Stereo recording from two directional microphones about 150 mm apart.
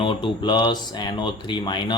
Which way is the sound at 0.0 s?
35° left (ahead or behind).